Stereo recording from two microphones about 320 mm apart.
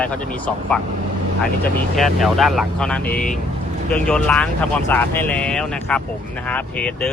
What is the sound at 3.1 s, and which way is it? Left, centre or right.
Speech, left.